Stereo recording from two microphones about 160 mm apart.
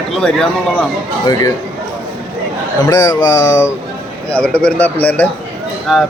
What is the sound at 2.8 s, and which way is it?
Speech, 25° left (ahead or behind).